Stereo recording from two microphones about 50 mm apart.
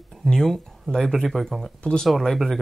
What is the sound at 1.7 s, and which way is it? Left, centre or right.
Speech, centre.